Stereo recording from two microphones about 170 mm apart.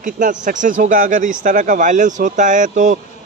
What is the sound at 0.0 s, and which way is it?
A man's voice, 45° right (ahead or behind).